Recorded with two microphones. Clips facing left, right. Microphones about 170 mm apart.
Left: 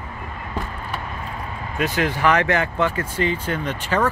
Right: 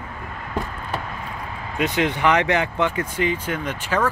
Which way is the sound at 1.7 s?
20° right (ahead or behind).